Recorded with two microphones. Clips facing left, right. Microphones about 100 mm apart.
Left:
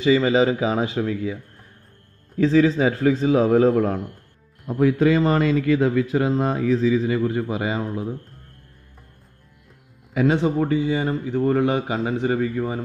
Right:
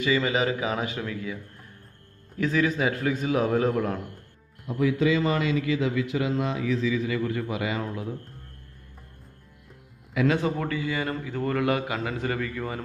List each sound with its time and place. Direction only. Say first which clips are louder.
0.0 s a man's voice: left 7 dB; 30° left (ahead or behind)
4.6 s a man's voice: left 5 dB; 45° left (ahead or behind); by 8.1 s 30° left (ahead or behind)
10.1 s a man's voice: left 5 dB; 25° left (ahead or behind)